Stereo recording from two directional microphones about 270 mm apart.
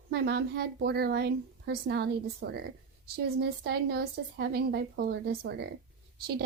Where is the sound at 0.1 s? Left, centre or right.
Right.